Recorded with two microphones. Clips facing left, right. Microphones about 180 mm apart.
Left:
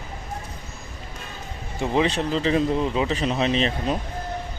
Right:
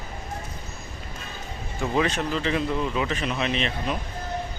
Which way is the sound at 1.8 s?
30° left (ahead or behind).